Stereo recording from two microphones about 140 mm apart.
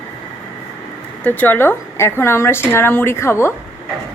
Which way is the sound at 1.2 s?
10° left (ahead or behind).